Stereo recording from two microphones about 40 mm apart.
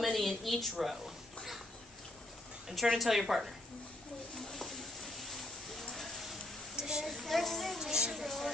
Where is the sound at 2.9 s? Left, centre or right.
Centre.